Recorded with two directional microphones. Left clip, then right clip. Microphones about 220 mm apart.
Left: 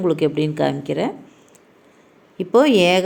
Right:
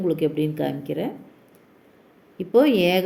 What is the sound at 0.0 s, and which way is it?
A woman's voice, 15° left (ahead or behind).